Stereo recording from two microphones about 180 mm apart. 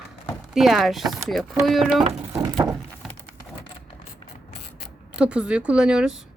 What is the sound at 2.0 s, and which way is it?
Speech, 35° right (ahead or behind).